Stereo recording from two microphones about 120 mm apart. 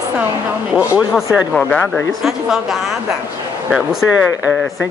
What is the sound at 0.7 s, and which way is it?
Speech, 15° right (ahead or behind).